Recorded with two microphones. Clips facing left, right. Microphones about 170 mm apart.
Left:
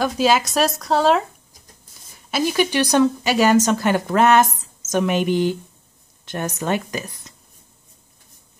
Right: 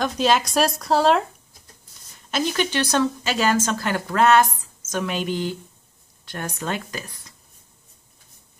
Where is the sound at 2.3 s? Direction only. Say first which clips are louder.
Left 4 dB; 10° left (ahead or behind).